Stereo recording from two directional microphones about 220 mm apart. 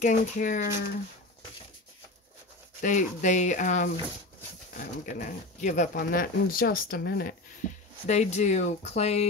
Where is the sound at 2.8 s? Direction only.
35° left (ahead or behind).